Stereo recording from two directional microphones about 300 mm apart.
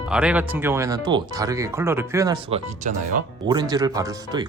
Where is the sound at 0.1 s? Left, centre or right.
Centre.